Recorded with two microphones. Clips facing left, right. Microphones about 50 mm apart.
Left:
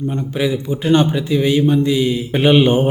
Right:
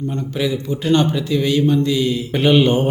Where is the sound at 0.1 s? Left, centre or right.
Centre.